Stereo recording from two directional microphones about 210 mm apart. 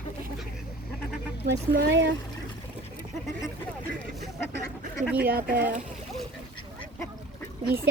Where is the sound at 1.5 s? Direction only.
50° right (ahead or behind).